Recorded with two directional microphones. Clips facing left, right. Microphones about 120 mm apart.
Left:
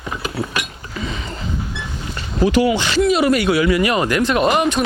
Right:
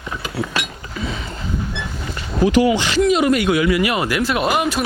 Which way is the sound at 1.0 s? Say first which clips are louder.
Even; 5° right (ahead or behind).